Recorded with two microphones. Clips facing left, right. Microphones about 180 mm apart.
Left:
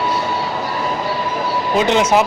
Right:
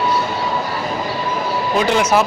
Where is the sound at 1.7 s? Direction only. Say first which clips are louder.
Left 1 dB; 20° left (ahead or behind).